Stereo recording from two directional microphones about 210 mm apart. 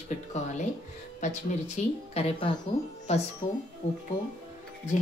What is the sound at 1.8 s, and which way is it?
A woman's voice, 35° left (ahead or behind).